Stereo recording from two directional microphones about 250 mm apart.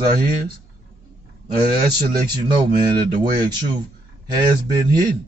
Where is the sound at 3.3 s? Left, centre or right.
Centre.